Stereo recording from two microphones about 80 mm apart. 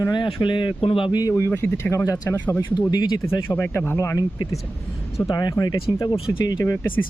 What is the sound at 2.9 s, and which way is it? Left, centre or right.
Speech, left.